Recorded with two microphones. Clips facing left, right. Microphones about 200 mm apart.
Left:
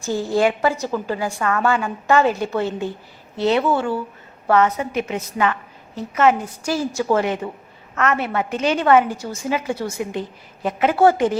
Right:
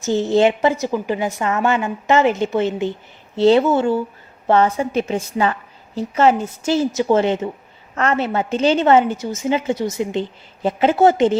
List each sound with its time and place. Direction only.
0.0 s a woman's voice: 20° right (ahead or behind)